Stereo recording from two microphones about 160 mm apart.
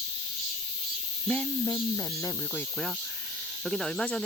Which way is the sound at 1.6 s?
20° left (ahead or behind).